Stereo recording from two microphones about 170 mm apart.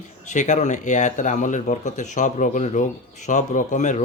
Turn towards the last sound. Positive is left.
turn(degrees=45)  # may be behind; listen again after turning